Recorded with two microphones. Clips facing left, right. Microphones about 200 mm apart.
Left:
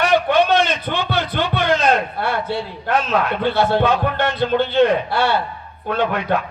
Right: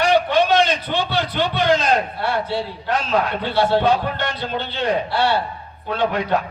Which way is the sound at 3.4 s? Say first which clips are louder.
Left 1 dB; 50° left (ahead or behind).